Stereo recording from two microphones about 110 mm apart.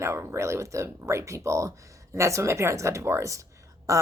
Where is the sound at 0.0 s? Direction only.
20° right (ahead or behind).